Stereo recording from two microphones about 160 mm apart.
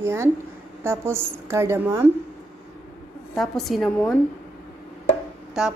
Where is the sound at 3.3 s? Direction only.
Centre (ahead or behind).